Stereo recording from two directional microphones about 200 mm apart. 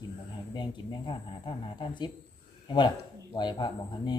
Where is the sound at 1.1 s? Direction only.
25° left (ahead or behind).